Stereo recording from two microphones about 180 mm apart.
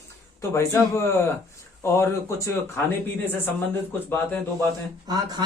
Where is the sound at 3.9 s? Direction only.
10° left (ahead or behind).